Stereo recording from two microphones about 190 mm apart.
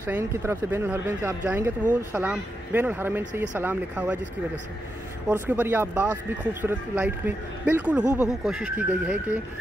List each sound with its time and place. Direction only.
0.0 s speech: 15° right (ahead or behind)
5.3 s speech: 10° right (ahead or behind)